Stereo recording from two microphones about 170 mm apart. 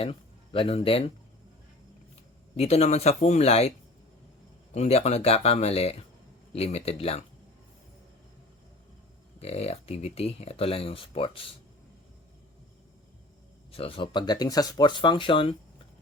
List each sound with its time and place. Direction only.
0.0 s speech: 35° left (ahead or behind)
2.6 s speech: 40° left (ahead or behind)
4.7 s speech: 40° left (ahead or behind)
9.4 s speech: 35° left (ahead or behind)
13.7 s speech: 35° left (ahead or behind)